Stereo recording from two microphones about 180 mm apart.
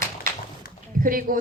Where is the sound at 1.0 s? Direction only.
50° right (ahead or behind).